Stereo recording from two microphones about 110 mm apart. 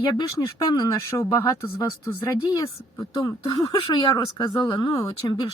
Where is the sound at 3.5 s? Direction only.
50° left (ahead or behind).